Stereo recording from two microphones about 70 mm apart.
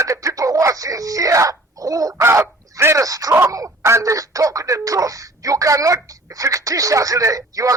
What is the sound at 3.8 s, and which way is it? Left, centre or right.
Speech, right.